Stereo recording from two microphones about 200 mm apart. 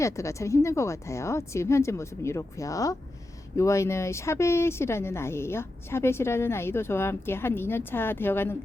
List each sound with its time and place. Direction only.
0.0 s speech: 15° left (ahead or behind)